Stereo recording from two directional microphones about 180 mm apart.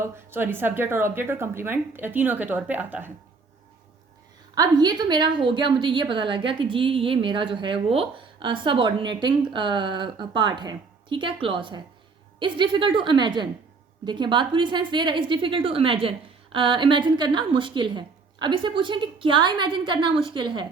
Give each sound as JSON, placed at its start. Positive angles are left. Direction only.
{"t": 0.0, "sound": "a woman's voice", "side_deg": -10}
{"t": 4.5, "sound": "a woman's voice", "side_deg": -20}